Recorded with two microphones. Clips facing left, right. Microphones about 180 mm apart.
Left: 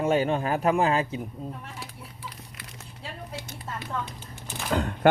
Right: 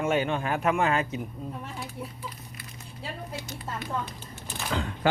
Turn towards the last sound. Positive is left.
turn(degrees=45)  # may be behind; listen again after turning